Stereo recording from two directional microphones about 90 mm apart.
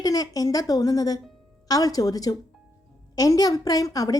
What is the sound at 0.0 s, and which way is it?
A woman's voice, 45° left (ahead or behind).